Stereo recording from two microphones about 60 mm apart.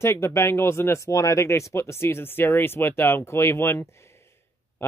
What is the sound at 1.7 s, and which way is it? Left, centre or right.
Speech, left.